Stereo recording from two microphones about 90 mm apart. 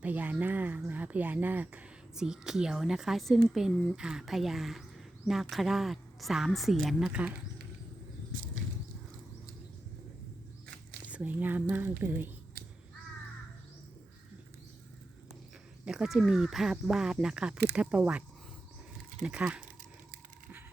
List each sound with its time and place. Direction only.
0.0 s a woman's voice: 15° right (ahead or behind)
11.0 s speech: 15° right (ahead or behind)
15.9 s a woman's voice: 5° right (ahead or behind)
19.2 s speech: 10° right (ahead or behind)